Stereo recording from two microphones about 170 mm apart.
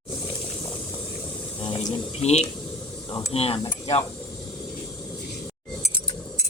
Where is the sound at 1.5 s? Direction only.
30° left (ahead or behind).